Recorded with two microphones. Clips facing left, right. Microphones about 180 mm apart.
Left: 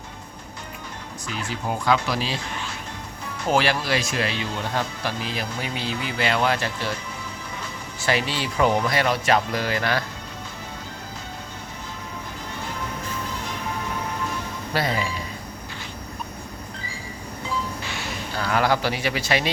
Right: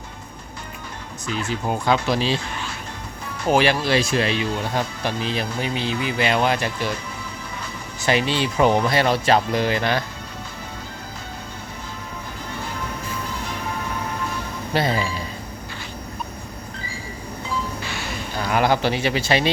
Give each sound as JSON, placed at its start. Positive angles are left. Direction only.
{"t": 1.5, "sound": "speech", "side_deg": -25}
{"t": 3.5, "sound": "speech", "side_deg": -20}
{"t": 4.4, "sound": "speech", "side_deg": -15}
{"t": 5.2, "sound": "speech", "side_deg": -25}
{"t": 8.0, "sound": "speech", "side_deg": -20}
{"t": 14.7, "sound": "speech", "side_deg": -25}
{"t": 18.3, "sound": "speech", "side_deg": -20}